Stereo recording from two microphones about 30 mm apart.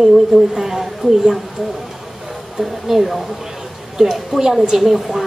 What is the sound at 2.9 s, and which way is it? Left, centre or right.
A woman's voice, centre.